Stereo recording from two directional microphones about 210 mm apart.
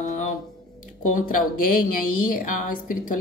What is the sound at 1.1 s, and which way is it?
A woman's voice, 40° left (ahead or behind).